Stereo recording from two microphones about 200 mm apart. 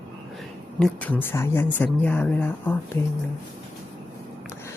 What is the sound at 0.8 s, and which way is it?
Speech, 5° left (ahead or behind).